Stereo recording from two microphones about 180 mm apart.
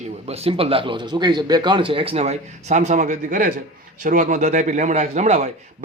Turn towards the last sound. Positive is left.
turn(degrees=-40)  # may be behind; listen again after turning